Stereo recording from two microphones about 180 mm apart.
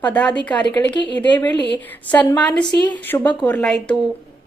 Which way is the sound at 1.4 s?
25° left (ahead or behind).